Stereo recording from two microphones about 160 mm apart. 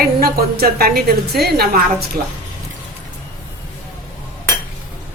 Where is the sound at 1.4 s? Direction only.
75° right (ahead or behind).